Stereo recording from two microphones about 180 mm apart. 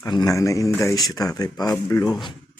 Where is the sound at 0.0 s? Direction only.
20° left (ahead or behind).